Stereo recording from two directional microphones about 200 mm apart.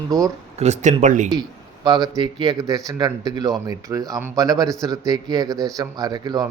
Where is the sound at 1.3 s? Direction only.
20° right (ahead or behind).